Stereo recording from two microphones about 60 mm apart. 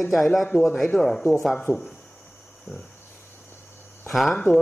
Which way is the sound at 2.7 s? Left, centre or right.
Centre.